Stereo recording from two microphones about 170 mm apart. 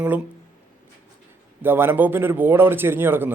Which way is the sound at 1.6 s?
10° right (ahead or behind).